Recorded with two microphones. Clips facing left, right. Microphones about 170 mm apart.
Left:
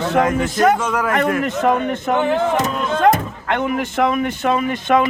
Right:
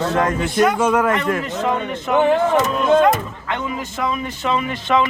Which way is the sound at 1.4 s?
55° left (ahead or behind).